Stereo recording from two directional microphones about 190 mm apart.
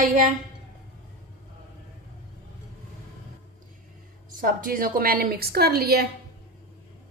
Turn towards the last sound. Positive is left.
turn(degrees=-55)  # may be behind; listen again after turning